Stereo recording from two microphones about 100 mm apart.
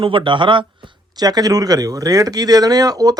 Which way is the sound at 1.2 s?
40° right (ahead or behind).